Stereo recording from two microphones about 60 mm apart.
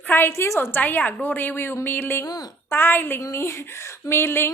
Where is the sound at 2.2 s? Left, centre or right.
Left.